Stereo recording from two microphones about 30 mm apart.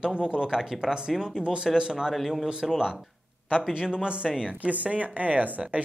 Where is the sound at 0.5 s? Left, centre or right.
Centre.